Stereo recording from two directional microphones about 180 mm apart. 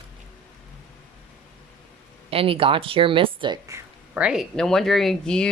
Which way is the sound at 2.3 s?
30° right (ahead or behind).